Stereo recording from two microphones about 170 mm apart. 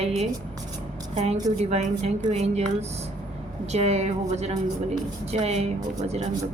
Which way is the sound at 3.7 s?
40° right (ahead or behind).